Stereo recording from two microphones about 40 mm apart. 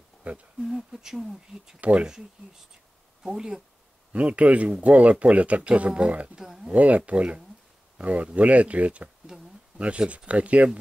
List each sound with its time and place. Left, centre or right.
0.6 s speech: centre
1.8 s speech: right
3.2 s speech: centre
4.1 s speech: right
6.3 s speech: centre
6.7 s speech: right